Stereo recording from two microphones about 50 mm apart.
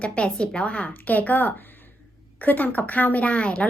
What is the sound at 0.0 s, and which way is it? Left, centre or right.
Speech, left.